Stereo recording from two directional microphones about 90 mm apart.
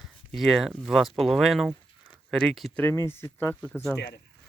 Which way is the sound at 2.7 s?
20° left (ahead or behind).